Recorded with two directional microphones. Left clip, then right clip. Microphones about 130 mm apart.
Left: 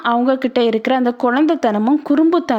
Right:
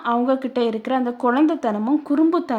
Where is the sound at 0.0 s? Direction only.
35° left (ahead or behind).